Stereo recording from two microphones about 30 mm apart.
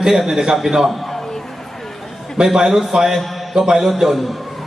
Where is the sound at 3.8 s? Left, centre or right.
Centre.